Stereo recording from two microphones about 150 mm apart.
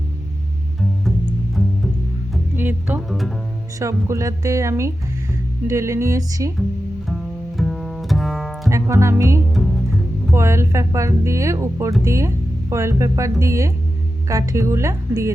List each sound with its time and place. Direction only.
2.6 s music: 15° right (ahead or behind)
3.1 s music: centre (ahead or behind)
3.8 s speech: 20° right (ahead or behind)
7.1 s music: centre (ahead or behind)
8.7 s speech: 20° right (ahead or behind)